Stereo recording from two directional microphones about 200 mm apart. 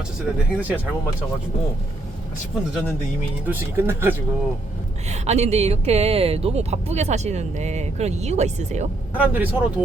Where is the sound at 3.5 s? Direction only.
10° right (ahead or behind).